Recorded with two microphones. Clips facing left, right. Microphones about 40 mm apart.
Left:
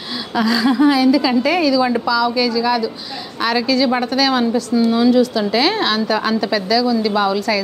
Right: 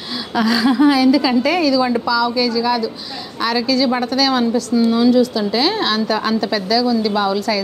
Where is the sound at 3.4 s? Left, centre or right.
Centre.